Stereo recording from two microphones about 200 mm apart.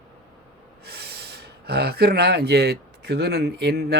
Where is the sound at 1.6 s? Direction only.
55° right (ahead or behind).